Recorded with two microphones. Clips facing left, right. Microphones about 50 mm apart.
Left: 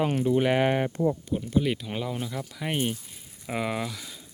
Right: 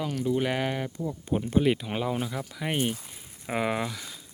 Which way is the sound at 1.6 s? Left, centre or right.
Centre.